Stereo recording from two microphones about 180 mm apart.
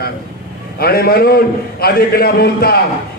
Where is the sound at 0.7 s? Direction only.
60° left (ahead or behind).